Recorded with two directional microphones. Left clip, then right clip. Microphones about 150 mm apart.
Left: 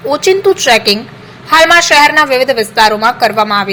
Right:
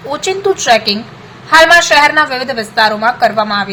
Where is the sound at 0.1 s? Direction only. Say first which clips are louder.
Left 5 dB; 15° left (ahead or behind).